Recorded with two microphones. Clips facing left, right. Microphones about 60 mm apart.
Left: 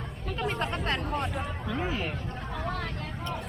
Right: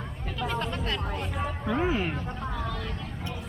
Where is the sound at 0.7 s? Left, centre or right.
Left.